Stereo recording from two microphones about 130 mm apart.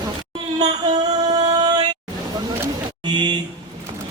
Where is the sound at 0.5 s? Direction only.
30° right (ahead or behind).